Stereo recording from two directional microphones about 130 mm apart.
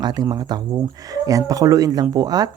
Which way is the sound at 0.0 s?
30° right (ahead or behind).